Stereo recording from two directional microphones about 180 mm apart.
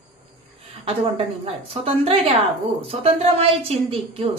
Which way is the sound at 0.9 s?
30° right (ahead or behind).